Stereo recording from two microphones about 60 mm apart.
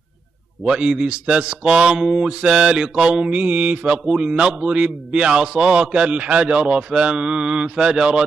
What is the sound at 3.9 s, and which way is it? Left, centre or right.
Mantra, centre.